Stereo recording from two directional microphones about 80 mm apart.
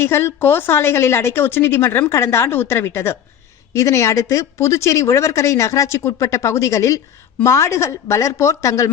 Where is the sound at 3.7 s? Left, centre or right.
Left.